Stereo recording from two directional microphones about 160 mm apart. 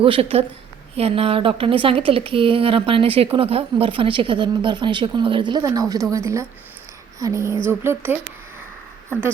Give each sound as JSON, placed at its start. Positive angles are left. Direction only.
{"t": 0.0, "sound": "a woman's voice", "side_deg": -35}
{"t": 6.1, "sound": "a sound", "side_deg": -20}
{"t": 7.7, "sound": "speech", "side_deg": -15}